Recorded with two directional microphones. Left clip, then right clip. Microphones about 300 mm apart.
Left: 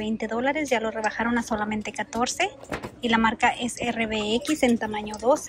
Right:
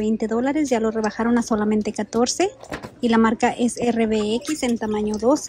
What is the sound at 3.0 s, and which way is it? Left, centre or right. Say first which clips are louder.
Speech: right 3 dB; centre.